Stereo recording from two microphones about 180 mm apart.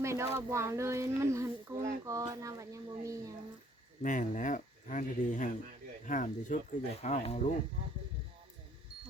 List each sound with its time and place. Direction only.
0.0 s a sound: 15° right (ahead or behind)
0.3 s speech: 15° right (ahead or behind)
4.0 s speech: 45° left (ahead or behind)